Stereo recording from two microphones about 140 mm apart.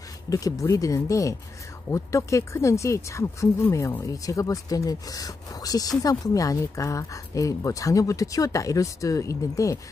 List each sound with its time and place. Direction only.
0.3 s speech: 25° left (ahead or behind)